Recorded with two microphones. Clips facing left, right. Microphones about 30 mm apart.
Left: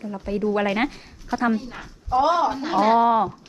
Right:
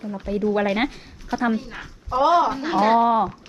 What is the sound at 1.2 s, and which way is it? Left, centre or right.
A woman's voice, centre.